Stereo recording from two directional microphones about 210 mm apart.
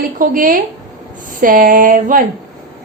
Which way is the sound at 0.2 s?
40° right (ahead or behind).